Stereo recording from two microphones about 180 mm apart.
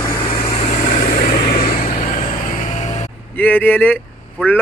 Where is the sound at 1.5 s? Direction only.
50° left (ahead or behind).